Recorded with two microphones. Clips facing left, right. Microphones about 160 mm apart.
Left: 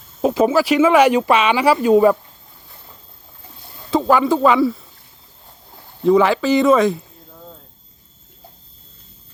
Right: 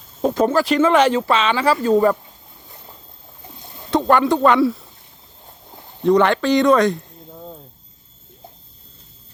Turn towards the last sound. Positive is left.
turn(degrees=-20)  # may be behind; listen again after turning